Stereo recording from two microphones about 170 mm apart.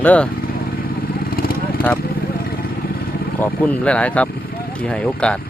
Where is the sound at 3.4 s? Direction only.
10° left (ahead or behind).